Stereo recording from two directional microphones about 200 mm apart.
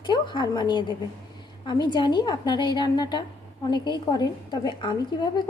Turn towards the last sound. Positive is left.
turn(degrees=20)  # may be behind; listen again after turning